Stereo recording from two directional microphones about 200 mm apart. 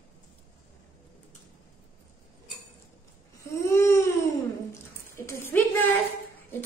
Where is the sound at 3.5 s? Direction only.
15° left (ahead or behind).